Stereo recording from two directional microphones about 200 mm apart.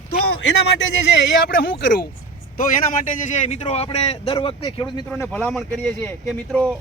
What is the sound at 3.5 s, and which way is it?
A man's voice, 35° left (ahead or behind).